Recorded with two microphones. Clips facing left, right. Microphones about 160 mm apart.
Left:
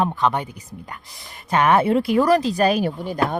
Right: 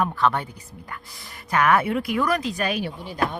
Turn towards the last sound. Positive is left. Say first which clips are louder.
# left 4 dB
turn(degrees=45)  # may be behind; listen again after turning